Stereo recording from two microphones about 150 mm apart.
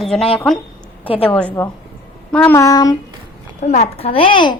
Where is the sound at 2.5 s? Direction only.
25° left (ahead or behind).